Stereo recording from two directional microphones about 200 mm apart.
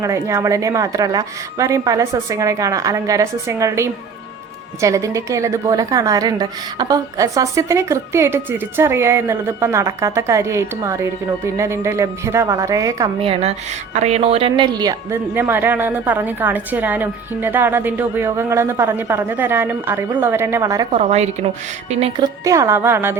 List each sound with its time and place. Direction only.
0.0 s a woman's voice: 15° right (ahead or behind)
13.2 s a woman's voice: 30° right (ahead or behind); by 20.8 s 15° right (ahead or behind)
20.9 s a woman's voice: 35° right (ahead or behind)
22.4 s a woman's voice: 15° right (ahead or behind)